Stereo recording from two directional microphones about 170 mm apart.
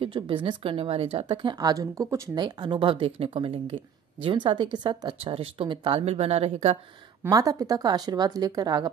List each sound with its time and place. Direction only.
0.0 s a woman's voice: 30° right (ahead or behind)
7.2 s a woman's voice: 20° right (ahead or behind)